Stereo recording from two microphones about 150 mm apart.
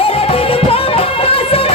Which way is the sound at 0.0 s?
40° left (ahead or behind).